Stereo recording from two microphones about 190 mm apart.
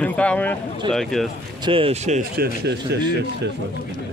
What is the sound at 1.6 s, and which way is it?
Speech, 30° right (ahead or behind).